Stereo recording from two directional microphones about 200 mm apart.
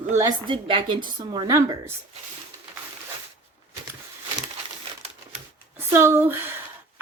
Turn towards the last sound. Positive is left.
turn(degrees=-10)  # may be behind; listen again after turning